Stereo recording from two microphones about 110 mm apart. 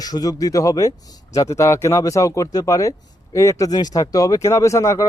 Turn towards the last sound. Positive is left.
turn(degrees=30)  # may be behind; listen again after turning